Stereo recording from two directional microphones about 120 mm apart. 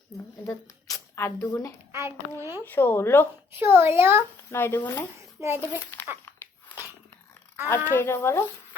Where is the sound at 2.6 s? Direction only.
15° left (ahead or behind).